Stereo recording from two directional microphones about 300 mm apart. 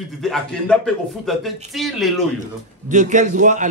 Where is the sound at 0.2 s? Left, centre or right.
Centre.